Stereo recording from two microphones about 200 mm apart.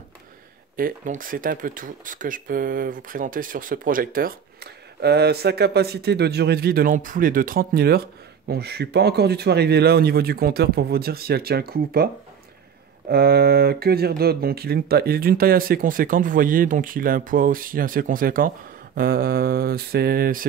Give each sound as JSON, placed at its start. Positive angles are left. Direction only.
{"t": 0.7, "sound": "speech", "side_deg": -45}
{"t": 13.1, "sound": "speech", "side_deg": -50}